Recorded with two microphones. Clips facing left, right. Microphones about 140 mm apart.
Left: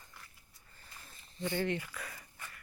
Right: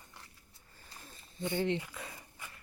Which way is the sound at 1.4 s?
20° right (ahead or behind).